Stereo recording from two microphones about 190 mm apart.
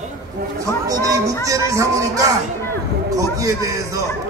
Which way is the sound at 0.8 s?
20° right (ahead or behind).